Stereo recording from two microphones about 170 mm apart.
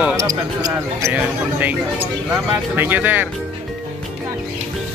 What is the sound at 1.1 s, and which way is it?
Speech, 10° right (ahead or behind).